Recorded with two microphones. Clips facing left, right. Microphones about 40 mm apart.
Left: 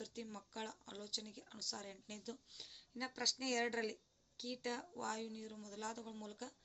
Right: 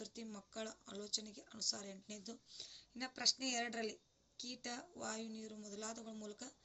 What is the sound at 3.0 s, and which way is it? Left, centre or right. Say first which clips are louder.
Speech: even; centre.